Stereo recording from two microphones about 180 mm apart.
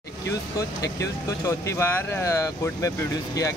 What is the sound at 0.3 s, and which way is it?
Speech, 20° left (ahead or behind).